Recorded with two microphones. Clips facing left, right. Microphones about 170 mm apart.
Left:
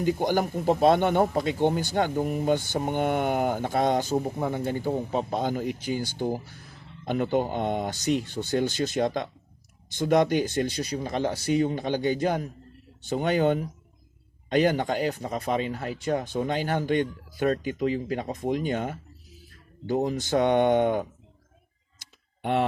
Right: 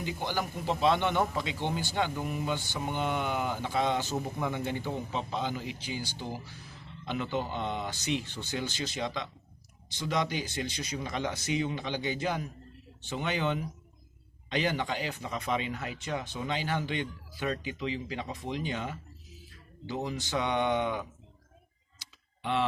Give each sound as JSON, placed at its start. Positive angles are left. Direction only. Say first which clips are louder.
{"t": 0.0, "sound": "speech", "louder": "left 9 dB", "side_deg": 45}
{"t": 4.1, "sound": "speech", "louder": "left 6 dB", "side_deg": 35}
{"t": 21.9, "sound": "tick-tock", "louder": "left 1 dB", "side_deg": 50}